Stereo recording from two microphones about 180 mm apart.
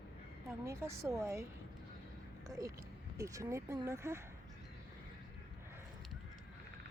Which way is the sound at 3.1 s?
15° right (ahead or behind).